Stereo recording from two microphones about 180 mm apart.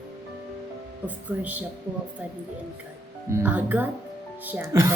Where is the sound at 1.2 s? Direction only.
10° right (ahead or behind).